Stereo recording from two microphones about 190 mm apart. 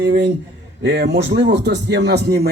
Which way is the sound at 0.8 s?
65° right (ahead or behind).